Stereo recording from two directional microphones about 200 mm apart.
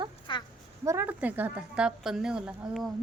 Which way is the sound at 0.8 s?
10° right (ahead or behind).